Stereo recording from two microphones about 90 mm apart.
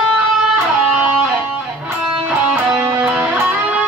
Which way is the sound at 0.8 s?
10° right (ahead or behind).